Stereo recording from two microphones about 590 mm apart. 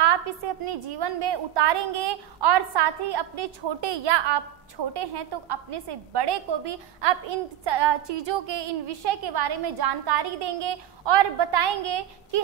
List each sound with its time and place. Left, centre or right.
0.7 s a woman's voice: right